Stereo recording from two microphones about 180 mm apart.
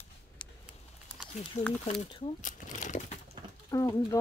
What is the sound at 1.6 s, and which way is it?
Speech, 40° left (ahead or behind).